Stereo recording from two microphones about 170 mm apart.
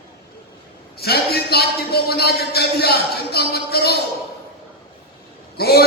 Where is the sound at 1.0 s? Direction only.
70° left (ahead or behind).